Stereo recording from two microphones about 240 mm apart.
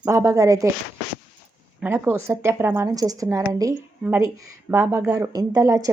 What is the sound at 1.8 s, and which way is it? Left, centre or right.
A woman's voice, centre.